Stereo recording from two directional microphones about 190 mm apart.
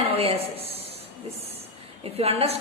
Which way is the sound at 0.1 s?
30° right (ahead or behind).